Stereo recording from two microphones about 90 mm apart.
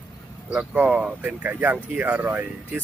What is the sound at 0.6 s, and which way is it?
Speech, 15° right (ahead or behind).